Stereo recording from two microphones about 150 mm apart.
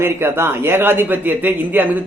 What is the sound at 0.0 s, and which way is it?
A man's voice, 15° right (ahead or behind).